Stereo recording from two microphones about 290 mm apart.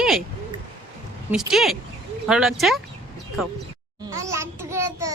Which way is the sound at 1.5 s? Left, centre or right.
Centre.